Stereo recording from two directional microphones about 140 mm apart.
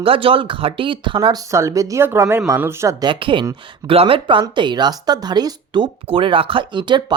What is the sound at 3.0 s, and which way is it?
Speech, 35° right (ahead or behind).